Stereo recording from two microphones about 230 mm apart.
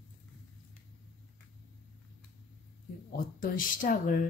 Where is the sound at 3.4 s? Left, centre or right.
Left.